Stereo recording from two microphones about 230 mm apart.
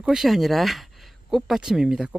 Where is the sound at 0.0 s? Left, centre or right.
Centre.